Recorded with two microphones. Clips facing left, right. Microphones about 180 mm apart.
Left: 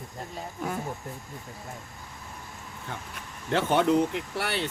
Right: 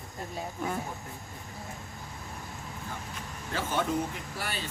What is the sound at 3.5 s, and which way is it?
Speech, 65° left (ahead or behind).